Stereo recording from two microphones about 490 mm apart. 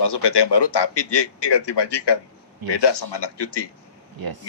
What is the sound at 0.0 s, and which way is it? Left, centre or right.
A man's voice, left.